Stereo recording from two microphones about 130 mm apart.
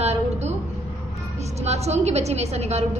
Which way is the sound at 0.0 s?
55° right (ahead or behind).